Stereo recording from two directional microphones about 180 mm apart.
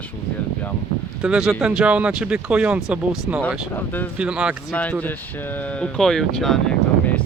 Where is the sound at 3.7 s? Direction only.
10° left (ahead or behind).